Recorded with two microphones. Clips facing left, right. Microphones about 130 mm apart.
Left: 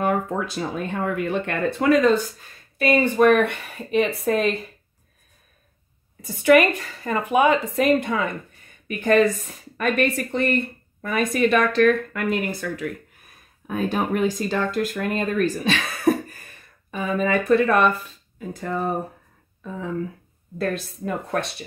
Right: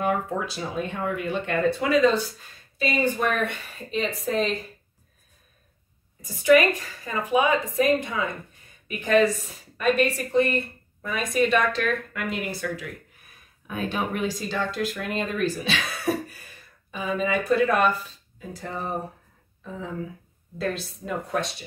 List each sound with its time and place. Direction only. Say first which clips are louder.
0.0 s speech: left 3 dB; 50° left (ahead or behind)
2.8 s a woman's voice: left 7 dB; 65° left (ahead or behind)
6.2 s a woman's voice: left 2 dB; 60° left (ahead or behind)
13.8 s speech: left 5 dB; 45° left (ahead or behind)
20.5 s a woman's voice: left 3 dB; 55° left (ahead or behind)